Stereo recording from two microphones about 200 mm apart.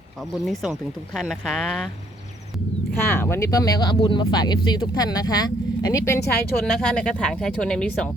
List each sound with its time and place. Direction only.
0.2 s speech: centre (ahead or behind)
3.2 s speech: 10° left (ahead or behind)
6.2 s a woman's voice: 55° left (ahead or behind)
6.7 s speech: 5° left (ahead or behind)